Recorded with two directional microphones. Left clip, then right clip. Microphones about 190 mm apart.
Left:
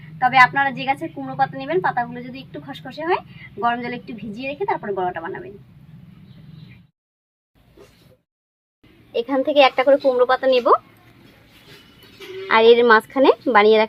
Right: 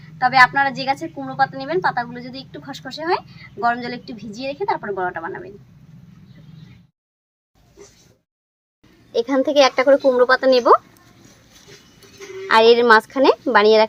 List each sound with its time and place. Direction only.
0.2 s a woman's voice: centre (ahead or behind)
9.1 s a woman's voice: 30° right (ahead or behind)
12.5 s a woman's voice: 5° right (ahead or behind)